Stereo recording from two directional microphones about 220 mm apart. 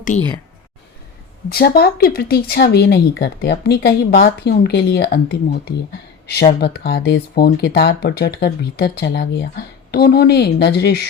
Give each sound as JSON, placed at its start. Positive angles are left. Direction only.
{"t": 0.1, "sound": "speech", "side_deg": 35}
{"t": 1.5, "sound": "speech", "side_deg": 45}